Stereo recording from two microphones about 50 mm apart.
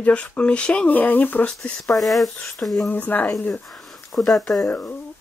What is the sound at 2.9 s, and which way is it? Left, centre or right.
Speech, left.